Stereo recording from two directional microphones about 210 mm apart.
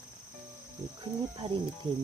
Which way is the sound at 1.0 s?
25° right (ahead or behind).